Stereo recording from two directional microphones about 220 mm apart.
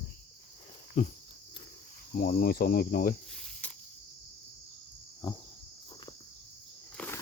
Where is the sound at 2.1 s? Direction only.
40° left (ahead or behind).